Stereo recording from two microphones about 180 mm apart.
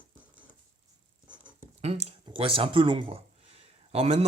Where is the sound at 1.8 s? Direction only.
35° right (ahead or behind).